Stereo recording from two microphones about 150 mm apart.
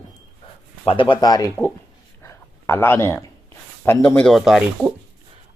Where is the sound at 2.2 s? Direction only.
15° left (ahead or behind).